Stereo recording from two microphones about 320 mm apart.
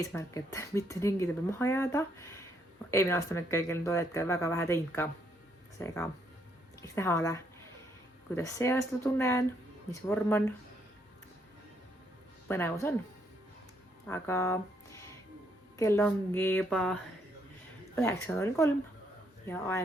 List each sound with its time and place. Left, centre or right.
0.0 s speech: centre
12.5 s speech: centre
14.1 s a woman's voice: centre